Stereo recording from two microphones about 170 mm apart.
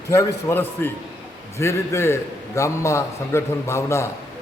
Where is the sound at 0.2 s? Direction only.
20° left (ahead or behind).